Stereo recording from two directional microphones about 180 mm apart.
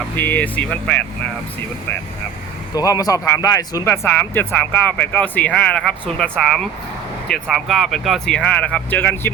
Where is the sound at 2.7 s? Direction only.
20° left (ahead or behind).